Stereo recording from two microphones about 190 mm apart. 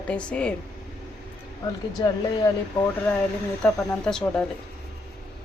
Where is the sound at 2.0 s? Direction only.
20° left (ahead or behind).